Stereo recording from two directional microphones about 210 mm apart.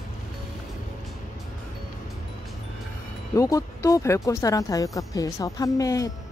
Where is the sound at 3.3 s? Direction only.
15° left (ahead or behind).